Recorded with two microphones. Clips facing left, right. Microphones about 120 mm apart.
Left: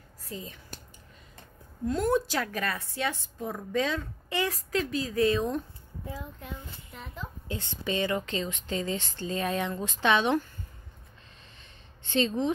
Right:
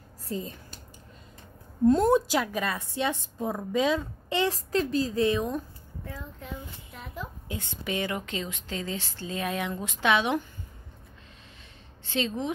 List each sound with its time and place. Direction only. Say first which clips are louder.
0.3 s speech: right 6 dB; 35° right (ahead or behind)
1.9 s a woman's voice: right 5 dB; 25° right (ahead or behind)
6.1 s a child's voice: right 3 dB; centre (ahead or behind)
7.4 s speech: left 3 dB; 15° right (ahead or behind)
12.1 s a child's voice: left 3 dB; 5° right (ahead or behind)